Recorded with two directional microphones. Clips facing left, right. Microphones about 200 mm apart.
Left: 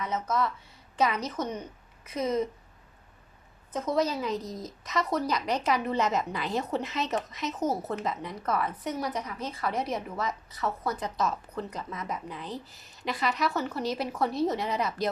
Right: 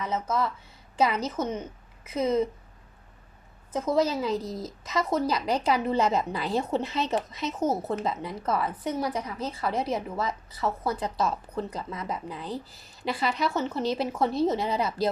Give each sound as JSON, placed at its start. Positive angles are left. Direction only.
{"t": 0.0, "sound": "speech", "side_deg": -30}
{"t": 3.7, "sound": "speech", "side_deg": -25}